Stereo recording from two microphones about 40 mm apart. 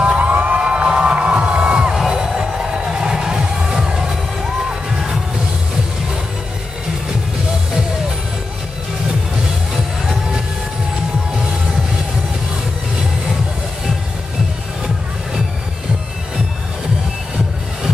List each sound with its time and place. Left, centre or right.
0.0 s crowd: right
0.3 s crowd: right; by 4.0 s centre
4.1 s a sound: centre